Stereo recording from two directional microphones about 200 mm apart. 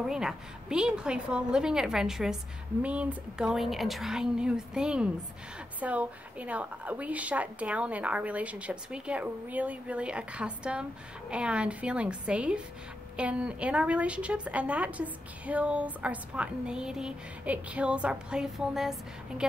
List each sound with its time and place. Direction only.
0.1 s a woman's voice: 5° right (ahead or behind)